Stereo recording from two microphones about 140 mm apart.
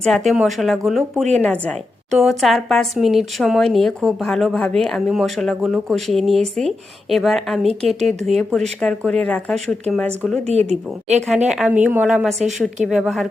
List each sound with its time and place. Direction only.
0.0 s a woman's voice: 5° left (ahead or behind)
10.4 s speech: 50° right (ahead or behind)
11.4 s speech: 5° right (ahead or behind)